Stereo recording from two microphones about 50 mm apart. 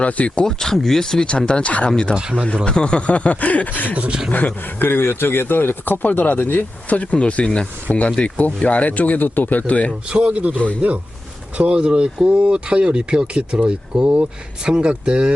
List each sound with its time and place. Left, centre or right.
0.0 s speech: left
0.4 s speech: centre
2.1 s speech: centre
2.6 s speech: centre; by 3.9 s left
3.9 s speech: right
4.3 s speech: left
6.9 s speech: left
7.9 s speech: left
10.1 s speech: right